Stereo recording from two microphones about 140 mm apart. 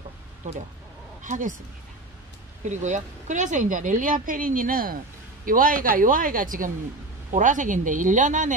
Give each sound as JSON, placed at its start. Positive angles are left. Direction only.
{"t": 1.2, "sound": "speech", "side_deg": -65}
{"t": 2.7, "sound": "speech", "side_deg": -60}